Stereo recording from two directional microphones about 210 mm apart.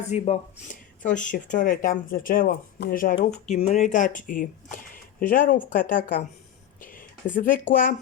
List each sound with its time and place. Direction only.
0.1 s speech: 35° left (ahead or behind)
6.7 s a sound: 40° left (ahead or behind)
7.7 s speech: 40° left (ahead or behind)